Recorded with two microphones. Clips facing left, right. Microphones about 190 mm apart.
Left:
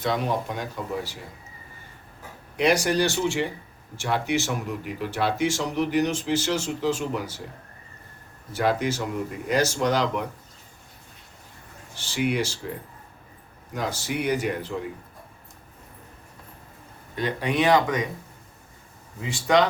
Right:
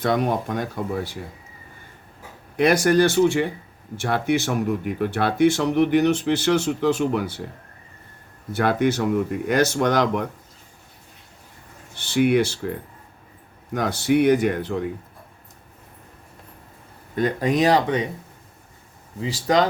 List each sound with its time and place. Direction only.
0.0 s speech: 55° right (ahead or behind)
2.6 s speech: 50° right (ahead or behind)
8.5 s speech: 60° right (ahead or behind)
11.9 s speech: 60° right (ahead or behind)
13.7 s speech: 60° right (ahead or behind)
17.2 s speech: 45° right (ahead or behind)
19.2 s speech: 40° right (ahead or behind)